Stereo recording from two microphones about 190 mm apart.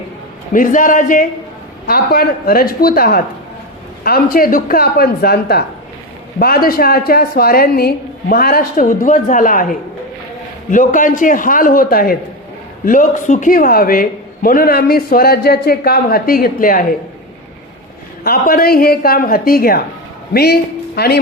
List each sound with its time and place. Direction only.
0.5 s a man's voice: 45° left (ahead or behind)
18.2 s a man's voice: 50° left (ahead or behind)